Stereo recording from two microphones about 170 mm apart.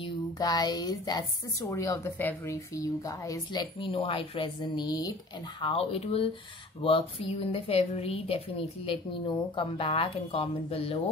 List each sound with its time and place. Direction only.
0.0 s speech: 25° left (ahead or behind)
3.8 s speech: 30° left (ahead or behind)
5.6 s speech: 35° left (ahead or behind)